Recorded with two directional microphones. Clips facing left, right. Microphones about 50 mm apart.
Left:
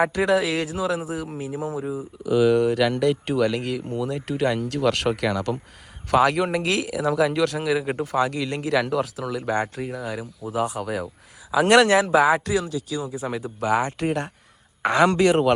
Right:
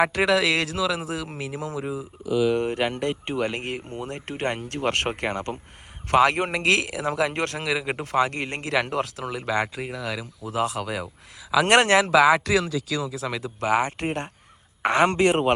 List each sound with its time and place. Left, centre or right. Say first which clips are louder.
0.0 s speech: even; right
2.6 s speech: left 5 dB; right
3.6 s speech: left 5 dB; right
6.1 s speech: even; right
13.0 s speech: left 1 dB; right
14.8 s speech: left 2 dB; right